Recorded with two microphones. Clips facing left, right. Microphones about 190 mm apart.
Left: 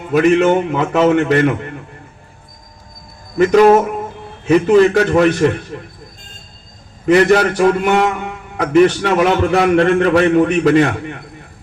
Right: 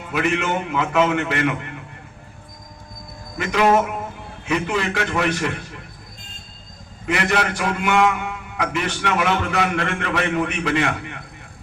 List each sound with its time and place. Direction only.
0.1 s a man's voice: 40° left (ahead or behind)
3.3 s a man's voice: 40° left (ahead or behind)
7.0 s a man's voice: 40° left (ahead or behind)